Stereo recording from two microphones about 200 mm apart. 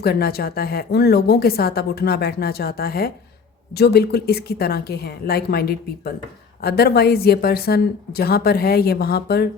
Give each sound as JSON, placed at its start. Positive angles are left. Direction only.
{"t": 0.0, "sound": "a woman's voice", "side_deg": 50}